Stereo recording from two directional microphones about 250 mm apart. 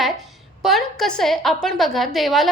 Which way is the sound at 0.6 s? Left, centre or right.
Centre.